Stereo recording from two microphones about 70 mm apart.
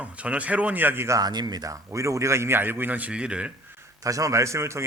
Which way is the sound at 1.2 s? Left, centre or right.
Right.